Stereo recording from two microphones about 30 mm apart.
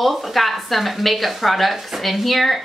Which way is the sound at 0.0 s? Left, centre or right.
Centre.